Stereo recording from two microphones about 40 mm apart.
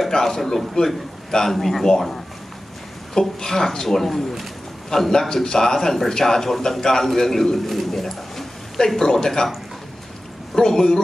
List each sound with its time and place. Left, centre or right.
0.0 s a man's voice: centre
1.3 s a man's voice: centre
3.2 s a man's voice: centre
4.8 s a man's voice: centre
10.5 s a man's voice: centre